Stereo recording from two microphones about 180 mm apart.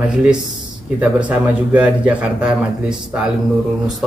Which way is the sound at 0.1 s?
5° right (ahead or behind).